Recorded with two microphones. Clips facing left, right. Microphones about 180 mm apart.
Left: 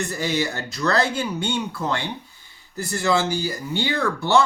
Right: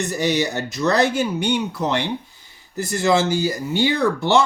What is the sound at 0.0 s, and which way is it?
Speech, 20° right (ahead or behind).